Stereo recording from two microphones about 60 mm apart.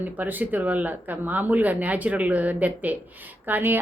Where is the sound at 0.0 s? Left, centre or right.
Right.